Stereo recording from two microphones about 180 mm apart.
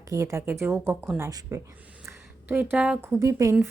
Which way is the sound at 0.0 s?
20° right (ahead or behind).